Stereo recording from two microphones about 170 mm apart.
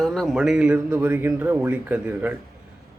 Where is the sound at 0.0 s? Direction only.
Centre (ahead or behind).